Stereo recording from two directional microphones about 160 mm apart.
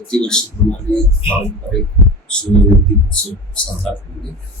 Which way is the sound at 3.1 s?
5° left (ahead or behind).